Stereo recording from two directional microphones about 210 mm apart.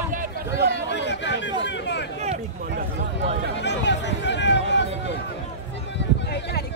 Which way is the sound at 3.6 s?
55° left (ahead or behind).